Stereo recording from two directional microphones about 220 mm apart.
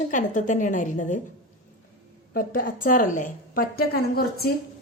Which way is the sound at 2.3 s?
40° left (ahead or behind).